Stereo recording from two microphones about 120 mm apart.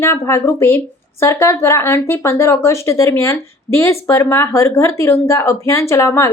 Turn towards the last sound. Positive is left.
turn(degrees=25)  # may be behind; listen again after turning